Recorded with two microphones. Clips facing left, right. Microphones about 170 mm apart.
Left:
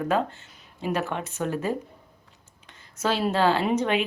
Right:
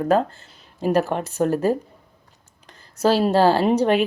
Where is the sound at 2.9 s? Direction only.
35° right (ahead or behind).